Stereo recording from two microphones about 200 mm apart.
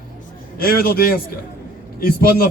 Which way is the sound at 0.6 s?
50° left (ahead or behind).